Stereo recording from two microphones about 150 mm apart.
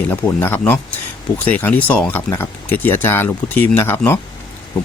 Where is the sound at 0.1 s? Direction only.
15° left (ahead or behind).